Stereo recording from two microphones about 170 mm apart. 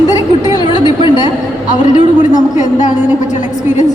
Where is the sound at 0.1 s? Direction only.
20° left (ahead or behind).